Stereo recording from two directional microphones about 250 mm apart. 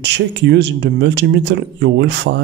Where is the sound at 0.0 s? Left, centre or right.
Right.